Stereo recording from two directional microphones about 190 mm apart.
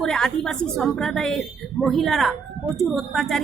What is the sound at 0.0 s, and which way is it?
A woman's voice, 5° left (ahead or behind).